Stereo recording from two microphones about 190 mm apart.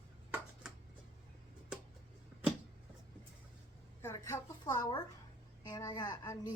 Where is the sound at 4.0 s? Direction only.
15° left (ahead or behind).